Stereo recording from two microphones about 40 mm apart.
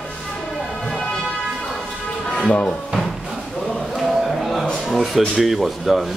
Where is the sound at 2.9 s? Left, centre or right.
Centre.